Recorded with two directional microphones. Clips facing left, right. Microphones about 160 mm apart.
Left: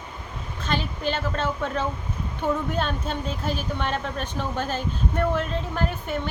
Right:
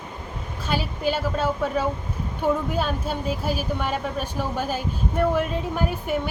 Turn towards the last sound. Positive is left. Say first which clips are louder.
# right 2 dB
turn(degrees=-10)  # may be behind; listen again after turning